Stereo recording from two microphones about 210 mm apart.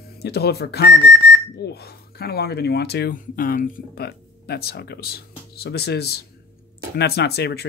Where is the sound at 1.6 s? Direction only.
50° left (ahead or behind).